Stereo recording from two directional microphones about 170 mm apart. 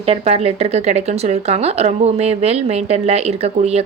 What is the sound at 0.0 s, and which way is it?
Speech, 35° right (ahead or behind).